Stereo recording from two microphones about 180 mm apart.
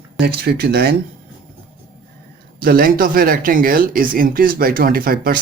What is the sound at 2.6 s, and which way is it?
Speech, 55° right (ahead or behind).